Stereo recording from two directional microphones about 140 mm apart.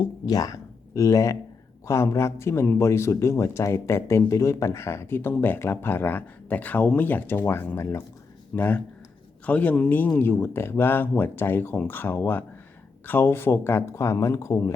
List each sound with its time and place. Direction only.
0.0 s speech: 25° left (ahead or behind)